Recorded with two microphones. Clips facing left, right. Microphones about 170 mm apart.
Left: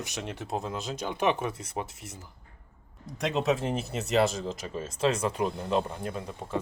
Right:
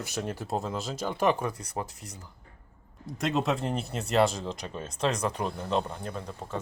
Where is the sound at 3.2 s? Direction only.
Centre (ahead or behind).